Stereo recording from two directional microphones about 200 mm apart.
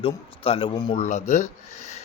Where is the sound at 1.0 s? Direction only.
35° left (ahead or behind).